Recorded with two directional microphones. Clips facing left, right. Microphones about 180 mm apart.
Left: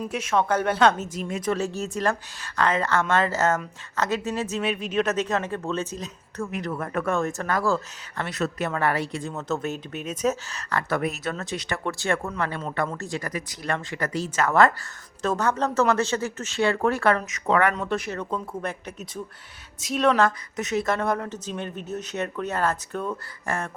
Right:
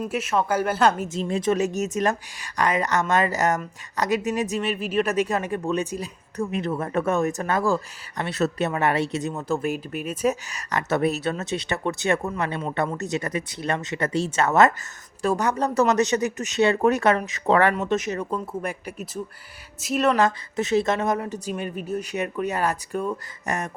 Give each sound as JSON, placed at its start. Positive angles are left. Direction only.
{"t": 0.1, "sound": "speech", "side_deg": -5}
{"t": 1.0, "sound": "speech", "side_deg": -25}
{"t": 4.6, "sound": "speech", "side_deg": -5}
{"t": 6.5, "sound": "speech", "side_deg": -25}
{"t": 8.3, "sound": "speech", "side_deg": -30}
{"t": 17.3, "sound": "speech", "side_deg": -35}
{"t": 17.7, "sound": "speech", "side_deg": -20}
{"t": 20.6, "sound": "speech", "side_deg": -30}